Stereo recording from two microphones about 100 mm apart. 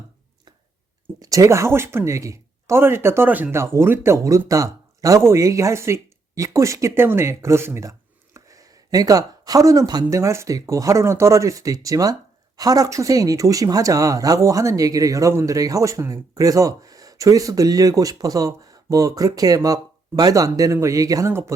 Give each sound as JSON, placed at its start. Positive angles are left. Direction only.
{"t": 1.2, "sound": "speech", "side_deg": -35}